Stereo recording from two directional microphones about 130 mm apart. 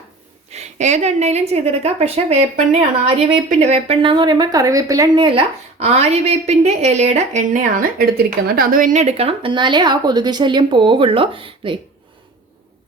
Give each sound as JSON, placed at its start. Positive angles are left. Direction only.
{"t": 0.5, "sound": "a woman's voice", "side_deg": -60}
{"t": 5.2, "sound": "a woman's voice", "side_deg": -45}